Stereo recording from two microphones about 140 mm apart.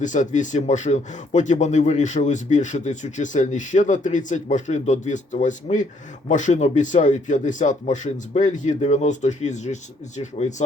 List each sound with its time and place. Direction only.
0.0 s speech: 65° left (ahead or behind)